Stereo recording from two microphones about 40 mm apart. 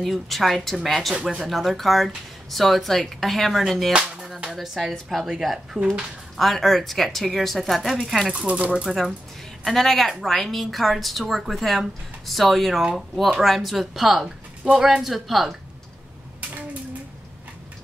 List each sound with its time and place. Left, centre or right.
0.0 s a woman's voice: centre
6.3 s a woman's voice: centre
8.5 s speech: right
9.7 s a woman's voice: centre